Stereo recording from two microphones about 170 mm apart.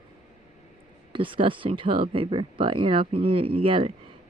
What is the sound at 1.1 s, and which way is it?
Speech, 30° right (ahead or behind).